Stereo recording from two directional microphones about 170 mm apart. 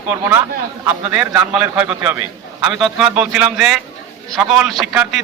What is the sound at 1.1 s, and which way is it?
A man's voice, 10° right (ahead or behind).